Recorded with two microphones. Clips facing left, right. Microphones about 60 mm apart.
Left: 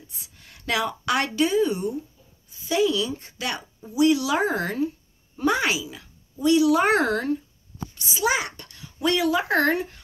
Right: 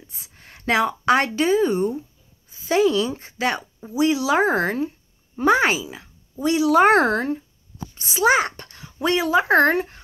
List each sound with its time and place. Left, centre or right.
0.1 s a woman's voice: right